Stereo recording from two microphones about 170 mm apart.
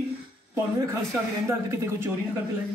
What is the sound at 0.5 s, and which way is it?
Speech, 15° right (ahead or behind).